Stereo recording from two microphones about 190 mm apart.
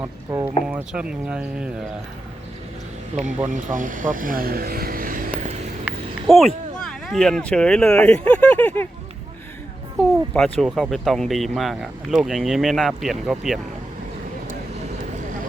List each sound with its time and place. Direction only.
0.0 s speech: 15° right (ahead or behind)
3.1 s speech: 35° right (ahead or behind)
5.8 s speech: centre (ahead or behind)
10.0 s speech: 5° left (ahead or behind)